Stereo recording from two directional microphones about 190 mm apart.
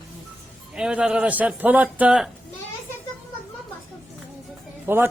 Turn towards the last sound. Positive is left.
turn(degrees=-10)  # may be behind; listen again after turning